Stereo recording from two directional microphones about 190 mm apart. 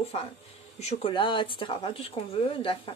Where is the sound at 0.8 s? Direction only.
35° left (ahead or behind).